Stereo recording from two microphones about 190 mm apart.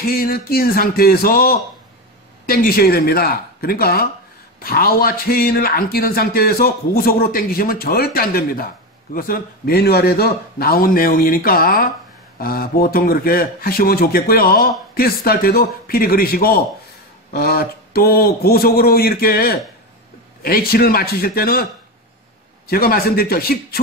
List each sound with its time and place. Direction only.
0.0 s a man's voice: 50° left (ahead or behind)
22.7 s a man's voice: 50° left (ahead or behind)